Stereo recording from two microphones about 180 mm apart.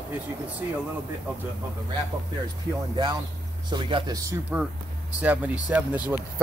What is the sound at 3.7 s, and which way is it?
Speech, 25° right (ahead or behind).